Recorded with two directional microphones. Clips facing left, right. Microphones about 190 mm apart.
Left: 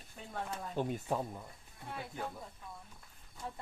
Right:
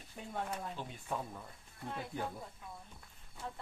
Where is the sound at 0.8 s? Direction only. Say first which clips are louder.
Left 11 dB; 50° left (ahead or behind).